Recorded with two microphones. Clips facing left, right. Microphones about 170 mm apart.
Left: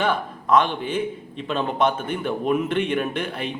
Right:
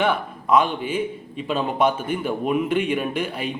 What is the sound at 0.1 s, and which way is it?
A man's voice, 5° right (ahead or behind).